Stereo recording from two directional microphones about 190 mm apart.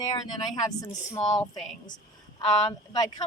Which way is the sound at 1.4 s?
5° left (ahead or behind).